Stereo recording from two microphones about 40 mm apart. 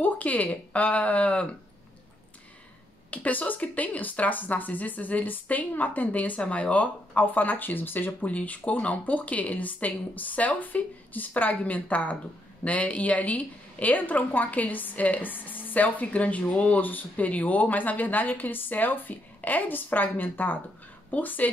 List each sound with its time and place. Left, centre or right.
0.0 s a woman's voice: left
3.1 s speech: left
8.3 s a woman's voice: left
16.8 s speech: left